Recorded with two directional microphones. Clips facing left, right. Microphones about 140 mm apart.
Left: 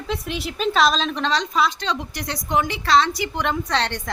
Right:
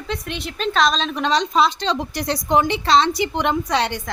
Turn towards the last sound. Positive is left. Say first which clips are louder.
# right 2 dB
turn(degrees=-10)  # may be behind; listen again after turning